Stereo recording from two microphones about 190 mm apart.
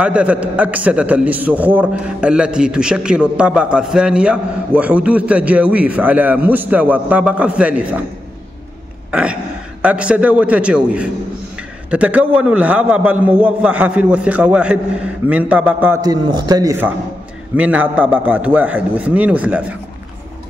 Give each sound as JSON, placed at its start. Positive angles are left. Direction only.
{"t": 0.0, "sound": "a man's voice", "side_deg": -5}
{"t": 9.1, "sound": "a man's voice", "side_deg": -5}
{"t": 16.0, "sound": "a man's voice", "side_deg": -20}
{"t": 17.6, "sound": "a man's voice", "side_deg": -5}